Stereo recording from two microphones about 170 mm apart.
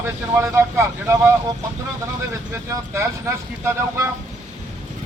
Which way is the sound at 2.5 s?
15° right (ahead or behind).